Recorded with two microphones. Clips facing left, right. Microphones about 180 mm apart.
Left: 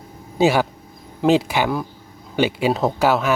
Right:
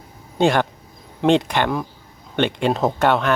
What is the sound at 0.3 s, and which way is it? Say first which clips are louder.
Speech: left 1 dB; 5° left (ahead or behind).